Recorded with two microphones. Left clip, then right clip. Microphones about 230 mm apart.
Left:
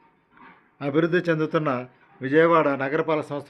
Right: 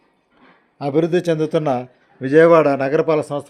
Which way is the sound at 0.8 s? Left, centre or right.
Centre.